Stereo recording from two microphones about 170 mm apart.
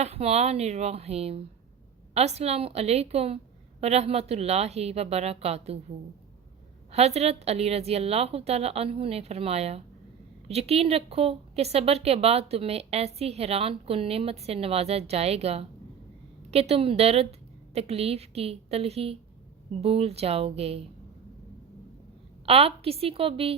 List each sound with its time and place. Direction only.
0.0 s speech: 35° right (ahead or behind)
6.9 s speech: 40° right (ahead or behind)
22.4 s speech: 35° right (ahead or behind)